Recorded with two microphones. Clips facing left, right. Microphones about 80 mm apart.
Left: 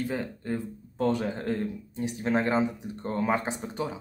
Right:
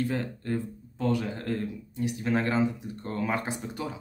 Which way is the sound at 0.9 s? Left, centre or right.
Left.